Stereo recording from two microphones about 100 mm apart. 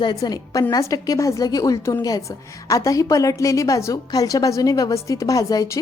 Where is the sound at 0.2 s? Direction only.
35° left (ahead or behind).